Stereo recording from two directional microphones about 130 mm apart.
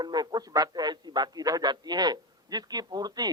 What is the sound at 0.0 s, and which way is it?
A man's voice, 30° right (ahead or behind).